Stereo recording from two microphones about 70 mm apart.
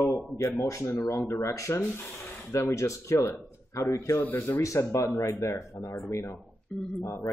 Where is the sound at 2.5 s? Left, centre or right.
Left.